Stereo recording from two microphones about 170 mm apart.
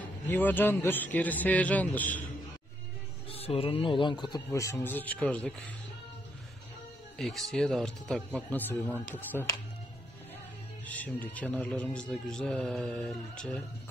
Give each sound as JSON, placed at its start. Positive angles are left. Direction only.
{"t": 0.3, "sound": "a man's voice", "side_deg": 10}
{"t": 3.3, "sound": "speech", "side_deg": 35}
{"t": 7.2, "sound": "a man's voice", "side_deg": 0}
{"t": 10.9, "sound": "a man's voice", "side_deg": 10}